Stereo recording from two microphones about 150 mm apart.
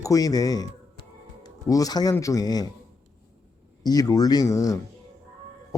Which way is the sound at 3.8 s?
25° left (ahead or behind).